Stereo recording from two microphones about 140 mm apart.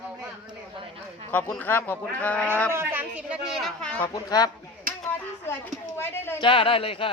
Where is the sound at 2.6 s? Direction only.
15° right (ahead or behind); by 4.0 s 5° left (ahead or behind).